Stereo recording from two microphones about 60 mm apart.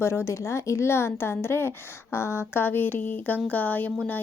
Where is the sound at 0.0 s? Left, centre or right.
Left.